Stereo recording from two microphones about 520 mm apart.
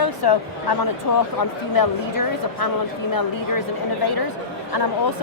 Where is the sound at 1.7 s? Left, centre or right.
Left.